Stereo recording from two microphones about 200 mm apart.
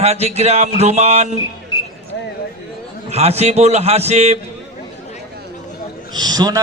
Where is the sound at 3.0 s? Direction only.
30° right (ahead or behind).